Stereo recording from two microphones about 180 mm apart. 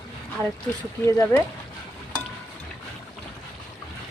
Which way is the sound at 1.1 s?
15° left (ahead or behind).